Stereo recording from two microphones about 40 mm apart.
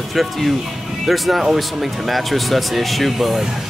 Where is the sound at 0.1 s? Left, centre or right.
Centre.